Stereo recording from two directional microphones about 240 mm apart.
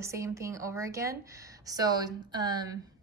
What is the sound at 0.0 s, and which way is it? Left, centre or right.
A woman's voice, centre.